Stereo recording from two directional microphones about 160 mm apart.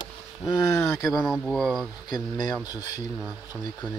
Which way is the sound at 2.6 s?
25° left (ahead or behind).